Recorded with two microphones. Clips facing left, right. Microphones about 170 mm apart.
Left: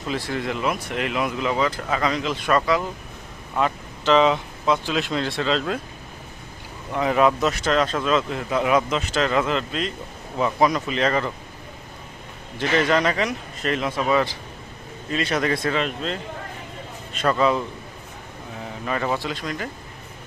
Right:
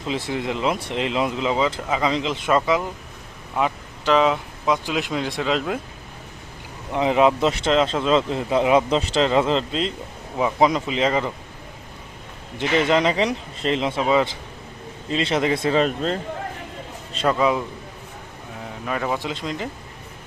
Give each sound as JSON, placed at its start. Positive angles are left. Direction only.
{"t": 0.1, "sound": "speech", "side_deg": -20}
{"t": 6.9, "sound": "speech", "side_deg": -20}
{"t": 12.5, "sound": "speech", "side_deg": -20}
{"t": 15.7, "sound": "speech", "side_deg": -40}
{"t": 17.2, "sound": "speech", "side_deg": -10}
{"t": 18.9, "sound": "speech", "side_deg": -5}
{"t": 19.2, "sound": "speech", "side_deg": -20}